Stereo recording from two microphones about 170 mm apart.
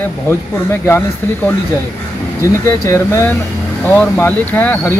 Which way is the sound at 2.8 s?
15° left (ahead or behind).